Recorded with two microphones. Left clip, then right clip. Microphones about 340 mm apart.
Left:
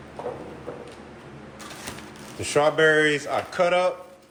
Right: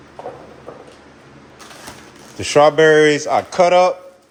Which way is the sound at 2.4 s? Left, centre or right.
Right.